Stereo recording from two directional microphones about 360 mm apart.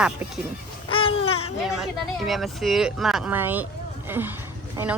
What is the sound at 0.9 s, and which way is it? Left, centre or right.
Babbling, centre.